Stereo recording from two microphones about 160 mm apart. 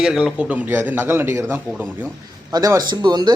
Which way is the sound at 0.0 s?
5° right (ahead or behind).